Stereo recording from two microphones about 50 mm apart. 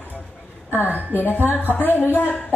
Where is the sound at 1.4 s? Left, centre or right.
Left.